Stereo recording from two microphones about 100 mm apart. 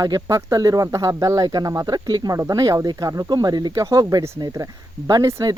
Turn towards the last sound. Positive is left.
turn(degrees=-35)  # may be behind; listen again after turning